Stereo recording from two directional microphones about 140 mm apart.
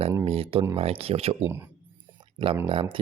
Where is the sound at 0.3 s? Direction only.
45° right (ahead or behind).